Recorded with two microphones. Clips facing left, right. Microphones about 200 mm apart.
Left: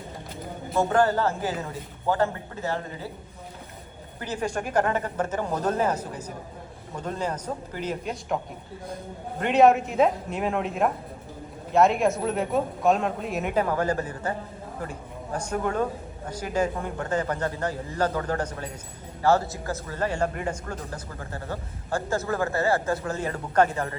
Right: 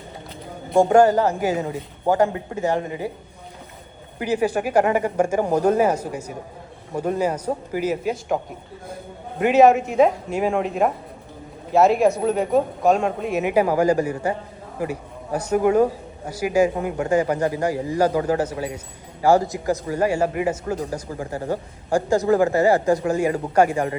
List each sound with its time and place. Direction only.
0.9 s a man's voice: 15° right (ahead or behind)
4.2 s a man's voice: 10° right (ahead or behind)
9.4 s a man's voice: centre (ahead or behind)